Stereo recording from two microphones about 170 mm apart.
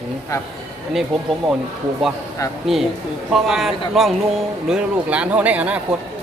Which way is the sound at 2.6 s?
Centre (ahead or behind).